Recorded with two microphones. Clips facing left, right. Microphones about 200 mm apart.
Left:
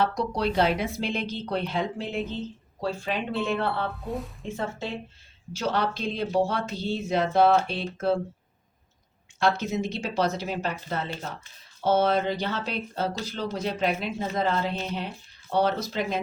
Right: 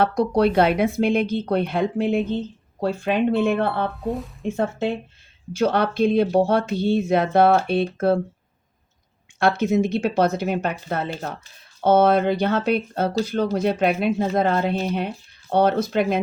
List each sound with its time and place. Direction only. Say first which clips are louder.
0.0 s speech: right 7 dB; 60° right (ahead or behind)
9.4 s speech: right 6 dB; 55° right (ahead or behind)